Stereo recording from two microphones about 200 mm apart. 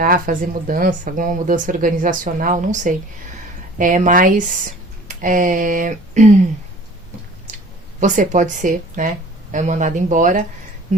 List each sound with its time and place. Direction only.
0.0 s speech: 45° right (ahead or behind)
8.0 s speech: 40° right (ahead or behind)